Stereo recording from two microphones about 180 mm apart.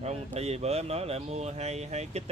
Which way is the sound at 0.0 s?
35° right (ahead or behind).